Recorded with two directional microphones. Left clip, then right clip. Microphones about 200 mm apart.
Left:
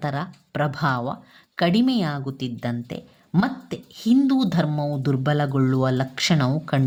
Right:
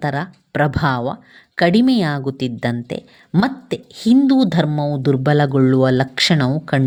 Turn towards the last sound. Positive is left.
turn(degrees=-20)  # may be behind; listen again after turning